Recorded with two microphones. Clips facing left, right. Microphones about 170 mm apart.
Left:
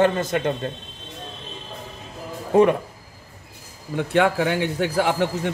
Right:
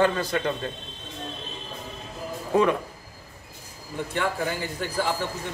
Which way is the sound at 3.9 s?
75° left (ahead or behind).